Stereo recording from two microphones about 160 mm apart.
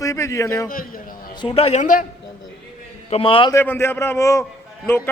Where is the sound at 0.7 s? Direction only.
60° left (ahead or behind).